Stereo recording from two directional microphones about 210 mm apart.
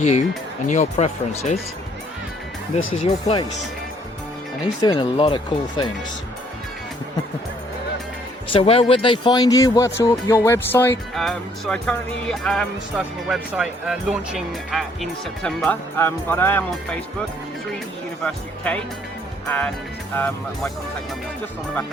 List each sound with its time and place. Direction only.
0.0 s speech: 30° left (ahead or behind)
2.9 s speech: 30° left (ahead or behind)
4.6 s speech: 20° left (ahead or behind)
8.4 s a man's voice: 25° left (ahead or behind); by 17.0 s 10° left (ahead or behind)
18.3 s a man's voice: 5° left (ahead or behind)